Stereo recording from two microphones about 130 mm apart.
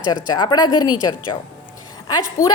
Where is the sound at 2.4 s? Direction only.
25° left (ahead or behind).